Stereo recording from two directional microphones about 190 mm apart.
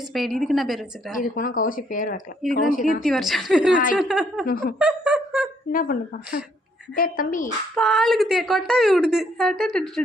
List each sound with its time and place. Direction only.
0.1 s speech: centre (ahead or behind)
1.4 s speech: 45° left (ahead or behind)
3.0 s speech: centre (ahead or behind)
4.4 s speech: 50° left (ahead or behind)
4.8 s a sound: 5° right (ahead or behind)
5.7 s speech: 45° left (ahead or behind)
7.8 s speech: centre (ahead or behind)